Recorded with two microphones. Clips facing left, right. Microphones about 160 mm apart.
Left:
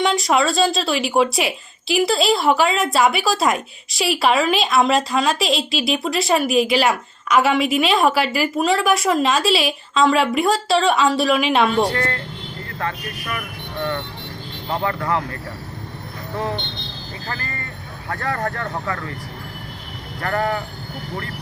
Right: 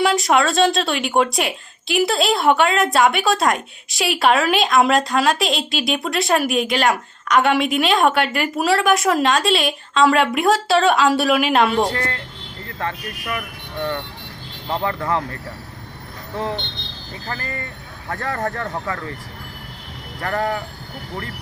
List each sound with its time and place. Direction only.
0.0 s speech: centre (ahead or behind)
12.8 s speech: 15° right (ahead or behind)
14.8 s speech: 20° right (ahead or behind)
18.1 s speech: 20° right (ahead or behind)
20.3 s speech: 10° right (ahead or behind)